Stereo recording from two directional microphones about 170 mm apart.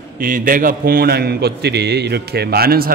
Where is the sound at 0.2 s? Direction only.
55° right (ahead or behind).